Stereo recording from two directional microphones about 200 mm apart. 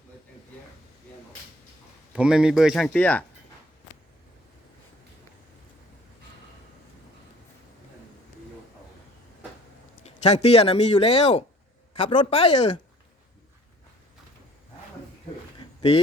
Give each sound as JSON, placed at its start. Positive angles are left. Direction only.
{"t": 2.1, "sound": "speech", "side_deg": -5}
{"t": 10.0, "sound": "speech", "side_deg": 35}